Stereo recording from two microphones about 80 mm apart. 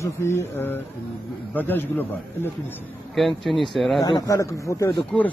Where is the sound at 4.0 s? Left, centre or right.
Left.